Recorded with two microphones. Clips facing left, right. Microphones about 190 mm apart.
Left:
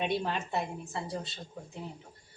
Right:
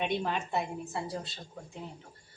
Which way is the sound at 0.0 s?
5° left (ahead or behind).